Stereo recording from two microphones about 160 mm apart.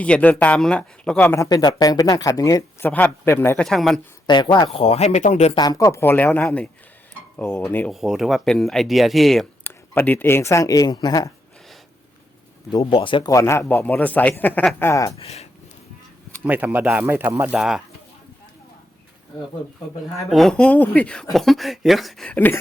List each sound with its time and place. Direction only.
0.0 s speech: 10° left (ahead or behind)
1.4 s speech: 25° left (ahead or behind)
3.6 s speech: centre (ahead or behind)
4.3 s speech: 30° left (ahead or behind)
4.7 s speech: 40° left (ahead or behind)
5.5 s speech: 25° left (ahead or behind)
7.9 s speech: centre (ahead or behind)
9.6 s speech: 10° left (ahead or behind)
12.7 s speech: 30° left (ahead or behind)
13.3 s speech: 15° left (ahead or behind)
15.2 s speech: 40° left (ahead or behind)
16.4 s speech: 10° right (ahead or behind)
20.3 s speech: 5° left (ahead or behind)